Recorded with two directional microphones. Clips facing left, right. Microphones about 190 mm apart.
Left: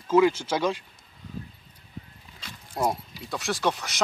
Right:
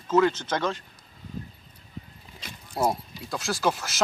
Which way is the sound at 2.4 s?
15° right (ahead or behind).